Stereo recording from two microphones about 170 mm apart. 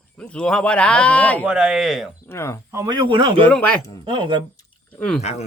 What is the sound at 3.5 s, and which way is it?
Speech, 5° left (ahead or behind).